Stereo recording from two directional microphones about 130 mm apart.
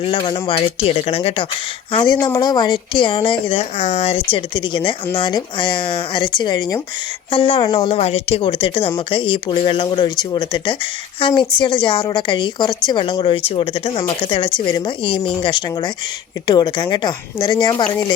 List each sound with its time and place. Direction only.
0.0 s a woman's voice: 40° left (ahead or behind)
7.3 s a woman's voice: 40° left (ahead or behind)